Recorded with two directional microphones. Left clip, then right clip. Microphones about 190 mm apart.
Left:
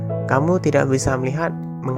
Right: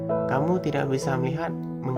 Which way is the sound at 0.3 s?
35° left (ahead or behind).